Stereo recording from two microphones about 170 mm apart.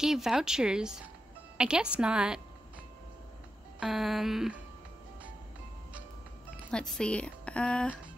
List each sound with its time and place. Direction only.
0.0 s speech: centre (ahead or behind)
3.8 s speech: centre (ahead or behind)
6.5 s speech: 5° left (ahead or behind)